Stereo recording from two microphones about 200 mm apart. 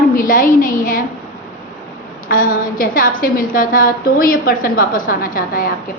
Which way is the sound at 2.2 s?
45° left (ahead or behind).